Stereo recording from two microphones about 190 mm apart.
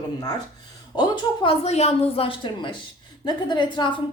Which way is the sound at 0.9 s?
20° left (ahead or behind).